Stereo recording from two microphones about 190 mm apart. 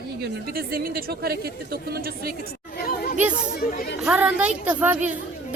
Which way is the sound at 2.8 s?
50° left (ahead or behind).